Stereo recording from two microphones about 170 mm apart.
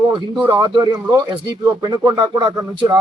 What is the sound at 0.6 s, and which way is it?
Speech, 25° right (ahead or behind).